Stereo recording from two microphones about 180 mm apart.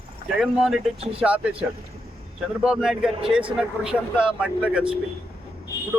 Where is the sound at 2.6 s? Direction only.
Centre (ahead or behind).